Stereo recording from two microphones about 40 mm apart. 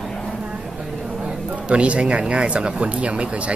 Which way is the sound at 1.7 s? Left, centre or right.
Right.